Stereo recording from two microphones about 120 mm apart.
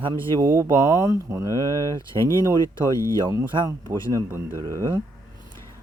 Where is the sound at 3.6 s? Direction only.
35° right (ahead or behind).